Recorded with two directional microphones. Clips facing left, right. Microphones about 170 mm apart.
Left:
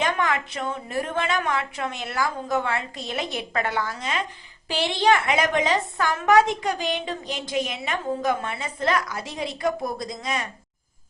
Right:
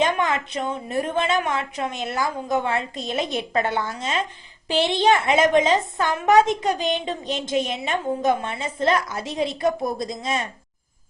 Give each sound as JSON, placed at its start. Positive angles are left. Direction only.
{"t": 0.0, "sound": "a woman's voice", "side_deg": -20}